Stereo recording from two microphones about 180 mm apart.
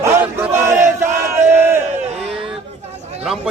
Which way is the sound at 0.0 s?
15° right (ahead or behind).